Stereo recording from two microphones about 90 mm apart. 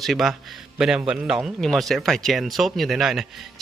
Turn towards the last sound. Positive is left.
turn(degrees=-5)  # may be behind; listen again after turning